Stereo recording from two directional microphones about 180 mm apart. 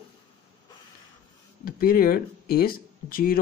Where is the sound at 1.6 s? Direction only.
55° left (ahead or behind).